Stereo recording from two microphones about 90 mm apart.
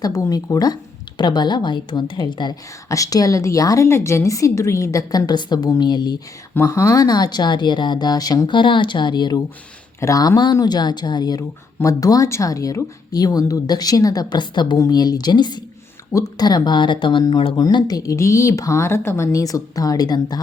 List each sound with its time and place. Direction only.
0.0 s speech: 40° left (ahead or behind)
1.2 s speech: 55° left (ahead or behind)
2.9 s a woman's voice: 40° left (ahead or behind)
6.5 s speech: 20° left (ahead or behind)
6.7 s speech: 40° left (ahead or behind); by 9.4 s 55° left (ahead or behind)
10.0 s speech: 40° left (ahead or behind)